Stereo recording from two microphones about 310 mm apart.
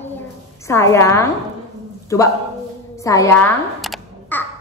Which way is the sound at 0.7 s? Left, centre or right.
Centre.